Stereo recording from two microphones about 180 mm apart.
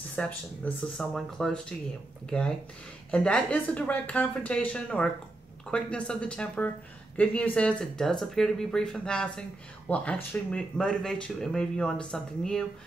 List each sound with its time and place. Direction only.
0.2 s speech: 5° left (ahead or behind)